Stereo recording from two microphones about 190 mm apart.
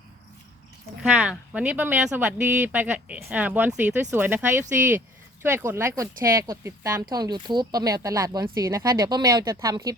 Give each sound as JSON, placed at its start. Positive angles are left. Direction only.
{"t": 1.0, "sound": "speech", "side_deg": -5}